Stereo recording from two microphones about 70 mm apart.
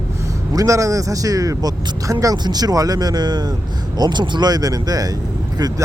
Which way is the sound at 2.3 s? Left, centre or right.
Right.